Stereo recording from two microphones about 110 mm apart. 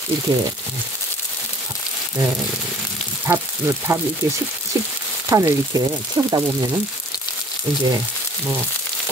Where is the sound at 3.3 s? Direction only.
25° right (ahead or behind).